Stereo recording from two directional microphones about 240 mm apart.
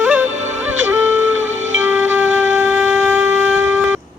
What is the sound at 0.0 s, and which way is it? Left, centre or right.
Music, centre.